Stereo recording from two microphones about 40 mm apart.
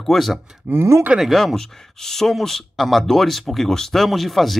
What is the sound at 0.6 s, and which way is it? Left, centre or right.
Speech, right.